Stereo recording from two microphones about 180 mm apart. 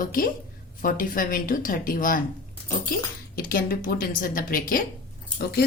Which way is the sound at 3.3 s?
55° left (ahead or behind).